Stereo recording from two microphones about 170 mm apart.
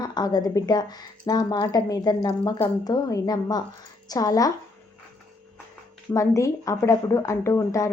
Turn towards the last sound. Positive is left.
turn(degrees=15)  # may be behind; listen again after turning